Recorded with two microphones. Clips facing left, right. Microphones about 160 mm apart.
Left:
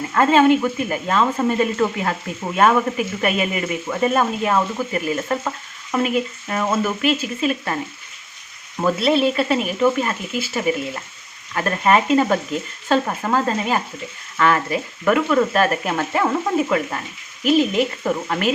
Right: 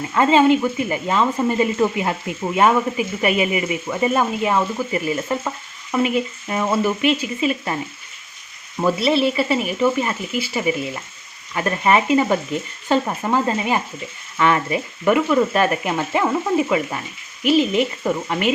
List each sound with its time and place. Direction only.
0.1 s speech: 10° right (ahead or behind)
8.8 s speech: 5° right (ahead or behind)